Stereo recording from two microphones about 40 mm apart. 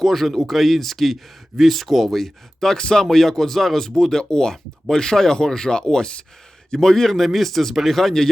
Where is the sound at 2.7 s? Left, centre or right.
Centre.